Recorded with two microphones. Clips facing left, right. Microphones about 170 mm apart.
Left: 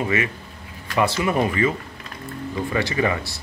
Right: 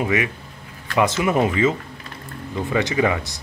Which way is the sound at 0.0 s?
15° right (ahead or behind).